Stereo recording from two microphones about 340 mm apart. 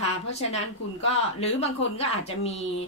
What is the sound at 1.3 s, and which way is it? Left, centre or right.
Speech, centre.